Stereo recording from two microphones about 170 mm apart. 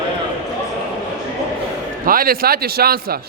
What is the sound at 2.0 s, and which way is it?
Speech, 55° right (ahead or behind).